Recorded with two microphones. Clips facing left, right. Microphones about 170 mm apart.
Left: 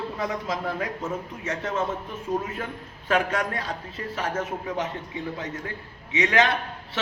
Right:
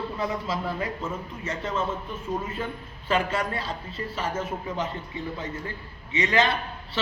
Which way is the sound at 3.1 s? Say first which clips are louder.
Left 1 dB; centre (ahead or behind).